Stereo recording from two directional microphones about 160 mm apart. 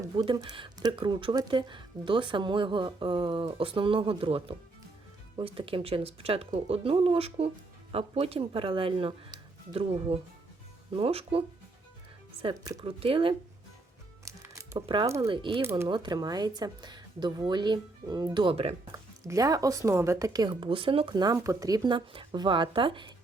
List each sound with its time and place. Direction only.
0.2 s speech: 25° right (ahead or behind)
12.8 s speech: 35° right (ahead or behind)
14.3 s music: 20° right (ahead or behind)
15.0 s speech: 20° right (ahead or behind)
15.3 s speech: 30° right (ahead or behind)
18.9 s speech: 20° right (ahead or behind)